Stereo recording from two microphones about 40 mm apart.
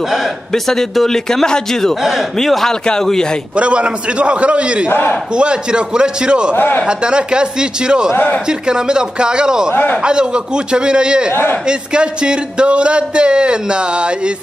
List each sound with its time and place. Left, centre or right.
0.5 s a man's voice: centre
3.5 s speech: right
4.8 s speech: left
5.3 s speech: right
6.5 s speech: left
6.9 s speech: right